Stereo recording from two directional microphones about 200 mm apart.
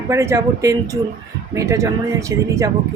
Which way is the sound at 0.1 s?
15° right (ahead or behind).